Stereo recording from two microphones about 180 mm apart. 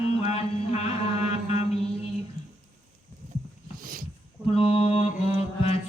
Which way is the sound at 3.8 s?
50° right (ahead or behind).